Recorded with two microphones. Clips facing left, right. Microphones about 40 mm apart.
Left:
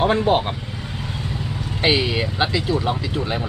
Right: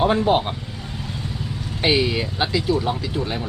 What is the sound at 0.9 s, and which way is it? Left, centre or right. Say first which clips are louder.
Speech: left 2 dB; left.